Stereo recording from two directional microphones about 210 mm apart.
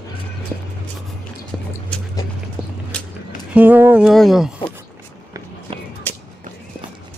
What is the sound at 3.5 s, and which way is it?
A man's voice, 10° right (ahead or behind).